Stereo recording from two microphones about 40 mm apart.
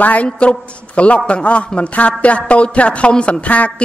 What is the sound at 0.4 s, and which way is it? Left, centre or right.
A woman's voice, left.